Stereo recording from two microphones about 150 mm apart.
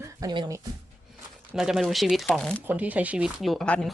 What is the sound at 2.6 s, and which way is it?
Speech, 10° right (ahead or behind).